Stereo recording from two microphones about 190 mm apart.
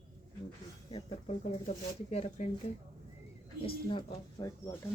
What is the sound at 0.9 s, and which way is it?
Speech, 30° left (ahead or behind).